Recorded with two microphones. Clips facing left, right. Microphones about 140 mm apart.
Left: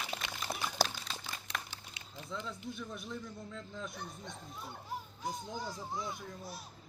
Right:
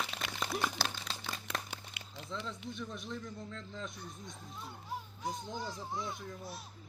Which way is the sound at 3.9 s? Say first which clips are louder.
Left 2 dB; 65° left (ahead or behind).